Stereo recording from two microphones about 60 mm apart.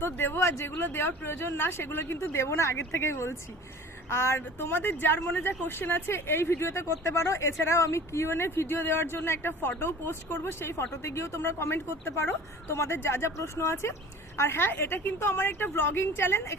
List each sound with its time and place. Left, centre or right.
0.0 s a woman's voice: left
0.8 s a woman's voice: left